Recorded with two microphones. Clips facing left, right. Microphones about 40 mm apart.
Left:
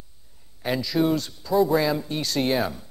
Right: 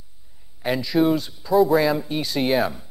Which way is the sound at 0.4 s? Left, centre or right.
Centre.